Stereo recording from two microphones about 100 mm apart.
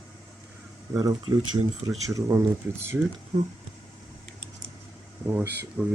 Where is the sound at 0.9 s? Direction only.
40° right (ahead or behind).